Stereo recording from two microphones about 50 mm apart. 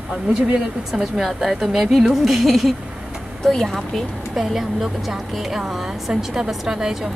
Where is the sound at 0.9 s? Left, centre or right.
Centre.